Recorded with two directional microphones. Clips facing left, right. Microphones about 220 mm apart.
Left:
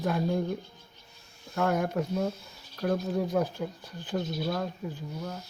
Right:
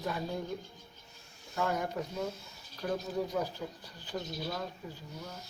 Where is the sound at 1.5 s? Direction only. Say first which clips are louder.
Left 6 dB; 55° left (ahead or behind).